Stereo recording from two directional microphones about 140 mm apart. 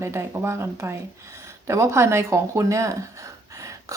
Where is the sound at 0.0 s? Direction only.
20° right (ahead or behind).